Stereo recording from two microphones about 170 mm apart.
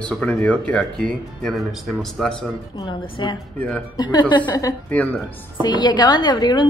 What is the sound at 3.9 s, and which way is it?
A woman's voice, 25° left (ahead or behind).